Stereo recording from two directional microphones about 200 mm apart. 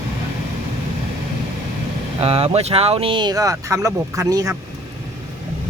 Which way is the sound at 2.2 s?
30° right (ahead or behind).